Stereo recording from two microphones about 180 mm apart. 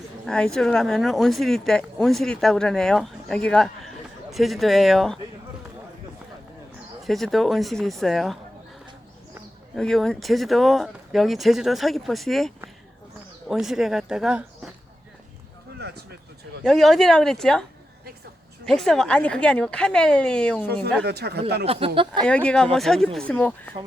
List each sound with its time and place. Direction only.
0.3 s speech: 5° left (ahead or behind)
7.0 s speech: centre (ahead or behind)
9.7 s speech: centre (ahead or behind)
16.6 s speech: centre (ahead or behind)
21.0 s speech: 65° right (ahead or behind)
21.7 s speech: 30° right (ahead or behind)
22.3 s speech: 5° left (ahead or behind)